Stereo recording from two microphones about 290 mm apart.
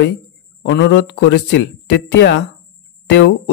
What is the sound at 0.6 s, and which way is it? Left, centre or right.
A man's voice, left.